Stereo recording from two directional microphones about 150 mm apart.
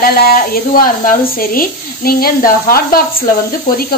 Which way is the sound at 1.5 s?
80° left.